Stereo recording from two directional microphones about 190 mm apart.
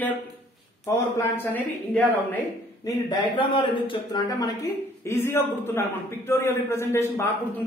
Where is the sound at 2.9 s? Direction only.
25° left (ahead or behind).